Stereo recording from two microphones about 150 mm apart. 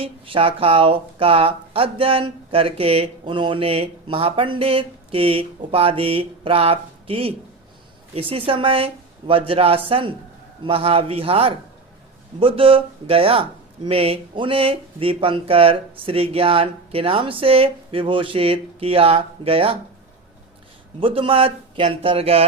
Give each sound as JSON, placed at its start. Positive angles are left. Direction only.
{"t": 0.0, "sound": "speech", "side_deg": -40}
{"t": 21.0, "sound": "speech", "side_deg": -35}